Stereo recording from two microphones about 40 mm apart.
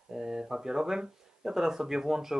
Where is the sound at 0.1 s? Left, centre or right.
Centre.